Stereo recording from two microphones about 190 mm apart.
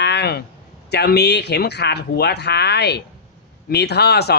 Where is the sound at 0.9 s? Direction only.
60° left (ahead or behind).